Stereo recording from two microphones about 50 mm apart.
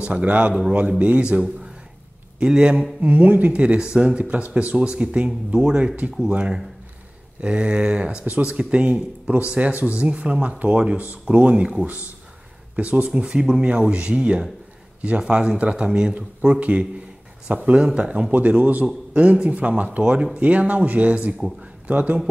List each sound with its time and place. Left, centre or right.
0.0 s speech: right
0.5 s a man's voice: centre
0.7 s speech: right
2.4 s a man's voice: centre
3.0 s speech: right
11.8 s speech: right
16.2 s speech: right
18.3 s speech: right